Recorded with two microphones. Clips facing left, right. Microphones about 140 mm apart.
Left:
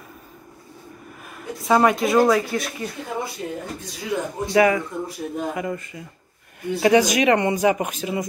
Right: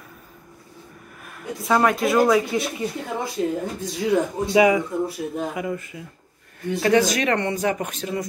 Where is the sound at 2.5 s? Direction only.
10° right (ahead or behind).